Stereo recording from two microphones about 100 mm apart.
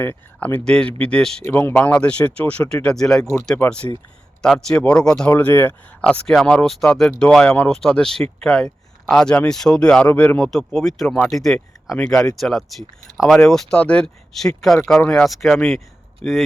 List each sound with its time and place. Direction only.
0.0 s speech: 20° left (ahead or behind)
1.5 s speech: 25° left (ahead or behind)
1.7 s speech: 10° left (ahead or behind)
5.3 s speech: 20° left (ahead or behind)